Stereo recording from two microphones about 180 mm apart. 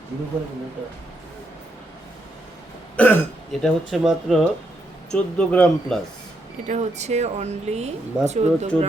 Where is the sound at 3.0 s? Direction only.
5° left (ahead or behind).